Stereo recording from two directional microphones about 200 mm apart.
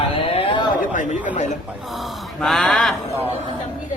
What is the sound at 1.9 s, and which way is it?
Speech, centre (ahead or behind).